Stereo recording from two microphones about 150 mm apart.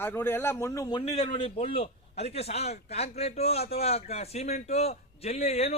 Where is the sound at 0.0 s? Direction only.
15° left (ahead or behind).